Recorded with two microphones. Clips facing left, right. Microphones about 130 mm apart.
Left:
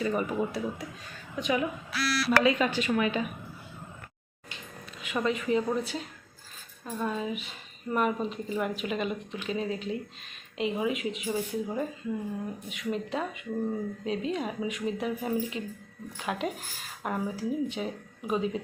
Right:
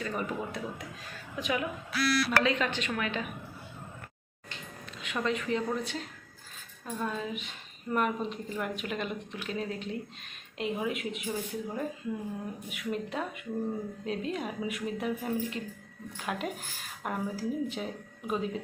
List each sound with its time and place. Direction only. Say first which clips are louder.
0.0 s a woman's voice: left 5 dB; 5° left (ahead or behind)
1.9 s speech: right 5 dB; 50° right (ahead or behind)
2.4 s a woman's voice: left 4 dB; 10° left (ahead or behind)
5.0 s a woman's voice: left 3 dB; 5° left (ahead or behind)